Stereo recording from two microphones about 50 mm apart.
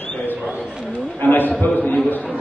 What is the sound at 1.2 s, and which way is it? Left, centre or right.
Speech, left.